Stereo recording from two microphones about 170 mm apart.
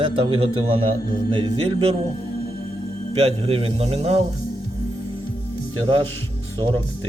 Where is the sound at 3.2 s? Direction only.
35° right (ahead or behind).